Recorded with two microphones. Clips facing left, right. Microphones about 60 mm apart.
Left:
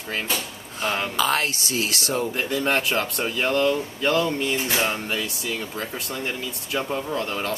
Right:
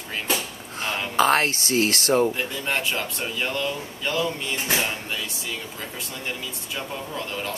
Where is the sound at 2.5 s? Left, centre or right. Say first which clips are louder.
Left 4 dB; left.